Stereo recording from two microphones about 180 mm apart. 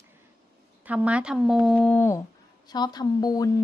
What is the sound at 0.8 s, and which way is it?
A woman's voice, 5° right (ahead or behind).